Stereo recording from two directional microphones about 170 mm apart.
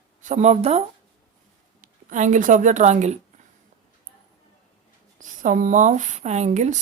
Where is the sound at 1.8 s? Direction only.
50° right (ahead or behind).